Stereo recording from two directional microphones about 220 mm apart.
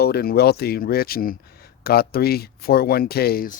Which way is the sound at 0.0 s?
45° left (ahead or behind).